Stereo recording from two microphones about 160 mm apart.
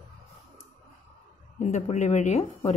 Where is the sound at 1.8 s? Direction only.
45° left (ahead or behind).